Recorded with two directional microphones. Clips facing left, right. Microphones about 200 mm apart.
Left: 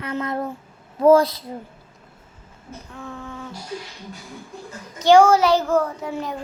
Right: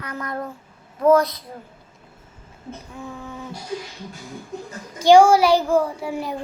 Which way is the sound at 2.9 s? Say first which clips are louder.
Left 1 dB; 15° right (ahead or behind).